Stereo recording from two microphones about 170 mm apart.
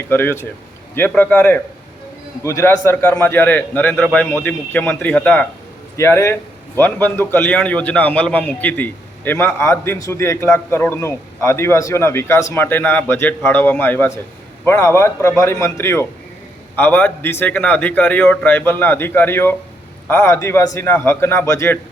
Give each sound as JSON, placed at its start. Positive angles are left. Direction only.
{"t": 0.1, "sound": "a man's voice", "side_deg": 15}